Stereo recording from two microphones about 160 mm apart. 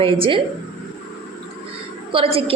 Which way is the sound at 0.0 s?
35° right (ahead or behind).